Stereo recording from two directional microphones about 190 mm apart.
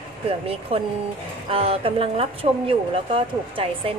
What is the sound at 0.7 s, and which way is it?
Speech, 30° right (ahead or behind).